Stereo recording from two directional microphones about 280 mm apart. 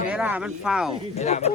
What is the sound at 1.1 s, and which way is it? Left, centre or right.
Speech, left.